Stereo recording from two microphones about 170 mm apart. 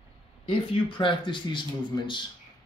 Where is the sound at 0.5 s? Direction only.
30° left (ahead or behind).